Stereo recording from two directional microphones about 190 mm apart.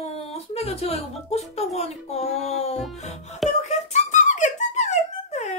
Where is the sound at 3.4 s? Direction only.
35° left (ahead or behind).